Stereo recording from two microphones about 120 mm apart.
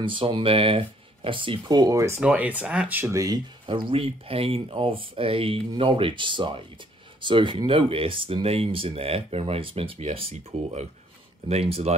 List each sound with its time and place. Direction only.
0.0 s speech: 45° right (ahead or behind); by 2.1 s 30° right (ahead or behind)
2.1 s speech: 10° right (ahead or behind)
3.6 s speech: 45° right (ahead or behind)